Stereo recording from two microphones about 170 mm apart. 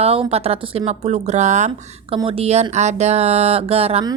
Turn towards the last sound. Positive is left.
turn(degrees=-35)  # may be behind; listen again after turning